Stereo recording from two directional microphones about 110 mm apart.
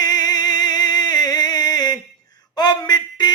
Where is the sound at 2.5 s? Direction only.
40° left (ahead or behind).